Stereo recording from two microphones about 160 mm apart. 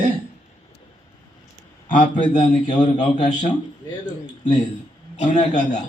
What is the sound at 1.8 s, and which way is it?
Speech, 55° left (ahead or behind).